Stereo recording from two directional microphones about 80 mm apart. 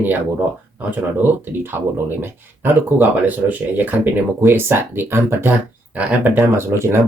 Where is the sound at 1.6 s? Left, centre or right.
Right.